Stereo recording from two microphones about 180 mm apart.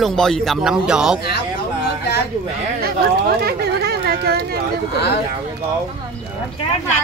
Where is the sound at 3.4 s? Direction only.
60° right (ahead or behind).